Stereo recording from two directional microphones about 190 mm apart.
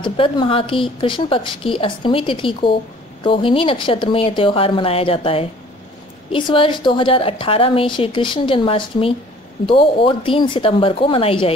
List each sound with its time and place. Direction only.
0.0 s a woman's voice: 25° left (ahead or behind)